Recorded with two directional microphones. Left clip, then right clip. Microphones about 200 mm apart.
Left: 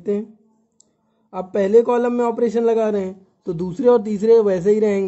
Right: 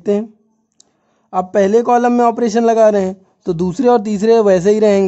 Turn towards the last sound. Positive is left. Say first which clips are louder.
# right 6 dB
turn(degrees=-40)  # may be behind; listen again after turning